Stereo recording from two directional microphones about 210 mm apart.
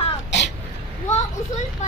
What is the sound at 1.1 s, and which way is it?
Speech, 35° left (ahead or behind).